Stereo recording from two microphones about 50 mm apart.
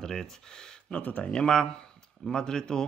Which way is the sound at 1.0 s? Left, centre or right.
Left.